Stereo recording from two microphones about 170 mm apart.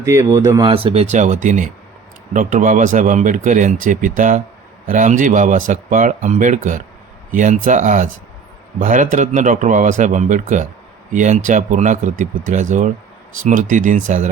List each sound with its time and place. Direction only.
0.0 s speech: 20° right (ahead or behind)
0.7 s speech: 35° right (ahead or behind)
1.1 s speech: 45° right (ahead or behind)